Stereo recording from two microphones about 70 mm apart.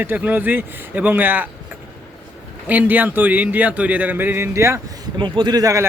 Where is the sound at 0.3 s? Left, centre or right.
Right.